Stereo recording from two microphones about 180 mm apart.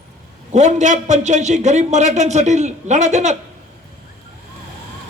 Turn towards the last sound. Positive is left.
turn(degrees=-40)  # may be behind; listen again after turning